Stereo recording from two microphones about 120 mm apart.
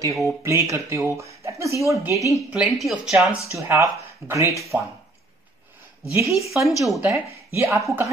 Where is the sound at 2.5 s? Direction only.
Centre (ahead or behind).